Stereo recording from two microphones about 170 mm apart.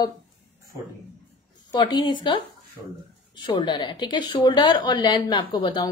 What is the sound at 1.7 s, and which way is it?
A woman's voice, 30° left (ahead or behind).